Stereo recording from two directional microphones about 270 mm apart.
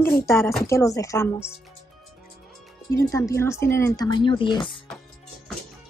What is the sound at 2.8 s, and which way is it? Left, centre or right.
Speech, centre.